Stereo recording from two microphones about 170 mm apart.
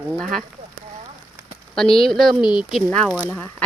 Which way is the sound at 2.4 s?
25° left (ahead or behind).